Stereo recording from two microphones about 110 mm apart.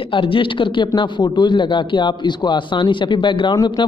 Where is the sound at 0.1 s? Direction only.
50° left (ahead or behind).